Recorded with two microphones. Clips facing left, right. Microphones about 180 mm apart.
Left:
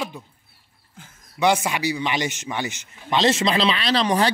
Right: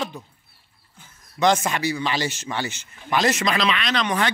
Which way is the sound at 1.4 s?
10° left (ahead or behind).